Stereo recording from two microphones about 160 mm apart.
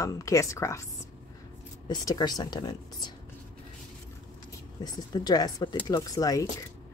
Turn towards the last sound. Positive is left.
turn(degrees=20)  # may be behind; listen again after turning